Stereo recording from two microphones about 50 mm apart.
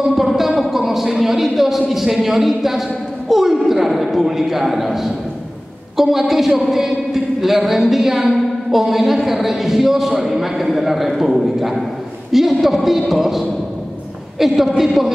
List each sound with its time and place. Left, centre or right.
0.0 s a woman's voice: centre